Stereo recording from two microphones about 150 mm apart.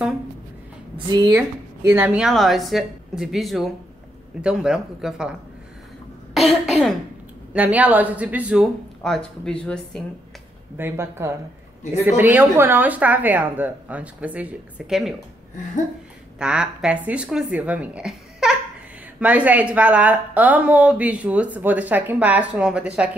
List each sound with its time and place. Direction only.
0.9 s a woman's voice: 30° right (ahead or behind)
1.9 s a woman's voice: 15° right (ahead or behind)
2.2 s speech: centre (ahead or behind)
6.3 s a woman's voice: centre (ahead or behind)
10.8 s a woman's voice: 15° right (ahead or behind)
16.3 s a woman's voice: 5° right (ahead or behind)